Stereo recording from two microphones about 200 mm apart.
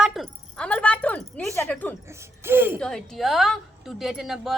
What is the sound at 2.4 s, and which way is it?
Speech, 10° right (ahead or behind).